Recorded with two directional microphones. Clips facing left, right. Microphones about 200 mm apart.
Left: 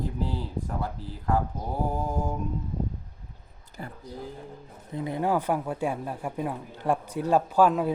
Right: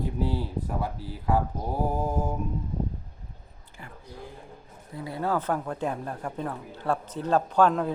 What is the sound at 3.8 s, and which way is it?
Speech, 40° left (ahead or behind).